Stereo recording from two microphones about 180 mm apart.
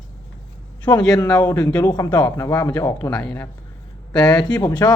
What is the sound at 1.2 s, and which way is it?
Speech, 20° left (ahead or behind).